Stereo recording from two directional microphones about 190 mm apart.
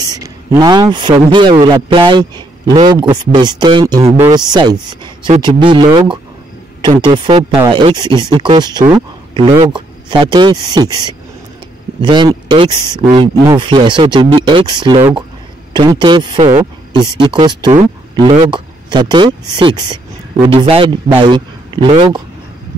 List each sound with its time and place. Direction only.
0.0 s a man's voice: 20° right (ahead or behind)